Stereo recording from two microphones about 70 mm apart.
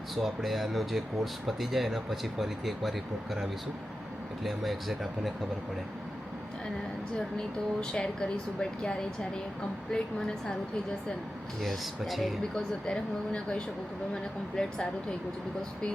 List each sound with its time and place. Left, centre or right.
0.2 s speech: centre
4.4 s speech: centre
7.3 s speech: centre
11.6 s speech: centre
12.8 s speech: centre